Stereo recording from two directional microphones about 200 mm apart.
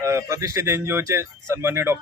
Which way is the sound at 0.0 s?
15° right (ahead or behind).